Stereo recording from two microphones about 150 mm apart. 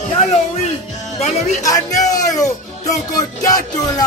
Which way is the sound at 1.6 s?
25° left (ahead or behind).